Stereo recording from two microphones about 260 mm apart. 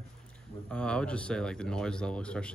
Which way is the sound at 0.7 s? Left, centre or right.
Centre.